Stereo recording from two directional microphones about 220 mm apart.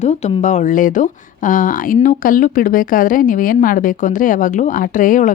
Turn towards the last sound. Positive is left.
turn(degrees=35)  # may be behind; listen again after turning